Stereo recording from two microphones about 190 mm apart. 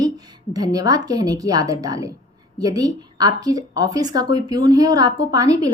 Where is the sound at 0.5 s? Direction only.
20° right (ahead or behind).